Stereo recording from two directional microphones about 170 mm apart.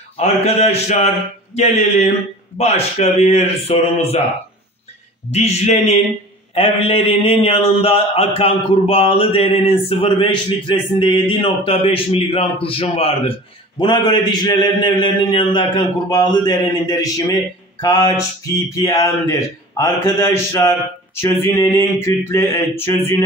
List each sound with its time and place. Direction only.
0.2 s a man's voice: 40° left (ahead or behind)
5.3 s a man's voice: 40° left (ahead or behind)
18.9 s mantra: 15° left (ahead or behind)